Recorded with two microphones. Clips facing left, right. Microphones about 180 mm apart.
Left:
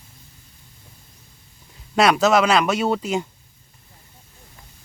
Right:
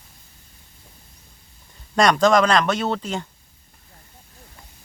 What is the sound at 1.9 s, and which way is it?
Speech, 5° left (ahead or behind).